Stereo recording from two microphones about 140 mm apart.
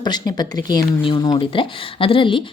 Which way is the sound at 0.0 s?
30° left (ahead or behind).